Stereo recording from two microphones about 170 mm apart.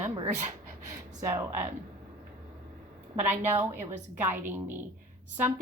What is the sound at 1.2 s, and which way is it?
Speech, 15° right (ahead or behind).